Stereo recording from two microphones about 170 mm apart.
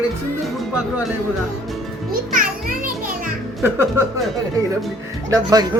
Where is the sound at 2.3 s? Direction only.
55° right (ahead or behind).